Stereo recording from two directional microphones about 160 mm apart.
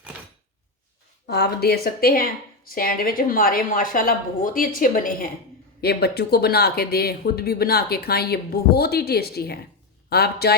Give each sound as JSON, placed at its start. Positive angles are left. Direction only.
{"t": 1.3, "sound": "speech", "side_deg": 85}
{"t": 5.8, "sound": "speech", "side_deg": 85}